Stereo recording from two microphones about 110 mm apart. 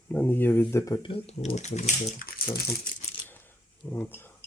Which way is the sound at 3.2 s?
20° left (ahead or behind).